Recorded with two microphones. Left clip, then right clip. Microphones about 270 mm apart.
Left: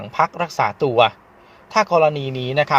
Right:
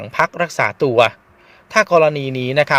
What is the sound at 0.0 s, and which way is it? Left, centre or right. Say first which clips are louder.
Speech: right 2 dB; right.